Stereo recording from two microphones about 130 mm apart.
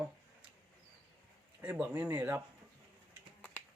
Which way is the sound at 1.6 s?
20° right (ahead or behind).